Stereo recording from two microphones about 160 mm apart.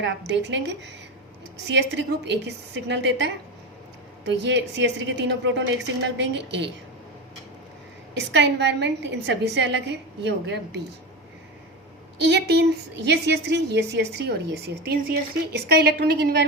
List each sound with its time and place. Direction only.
0.0 s a woman's voice: 90° right
8.1 s a woman's voice: 90° right
12.2 s a woman's voice: 90° right